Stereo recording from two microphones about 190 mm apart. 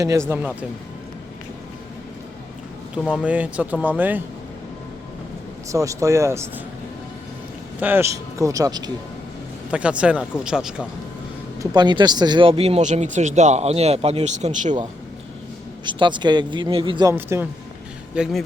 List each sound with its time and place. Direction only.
0.0 s speech: 15° right (ahead or behind)
3.0 s speech: 5° left (ahead or behind)
3.2 s speech: 5° right (ahead or behind)
5.7 s speech: 15° right (ahead or behind)
7.8 s speech: 10° right (ahead or behind)
9.7 s speech: 5° right (ahead or behind)
11.6 s speech: 20° right (ahead or behind); by 14.8 s 40° right (ahead or behind)
15.8 s speech: 25° right (ahead or behind)
17.2 s speech: 10° right (ahead or behind)